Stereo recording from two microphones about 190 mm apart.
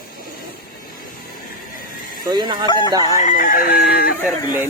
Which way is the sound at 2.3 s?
20° right (ahead or behind).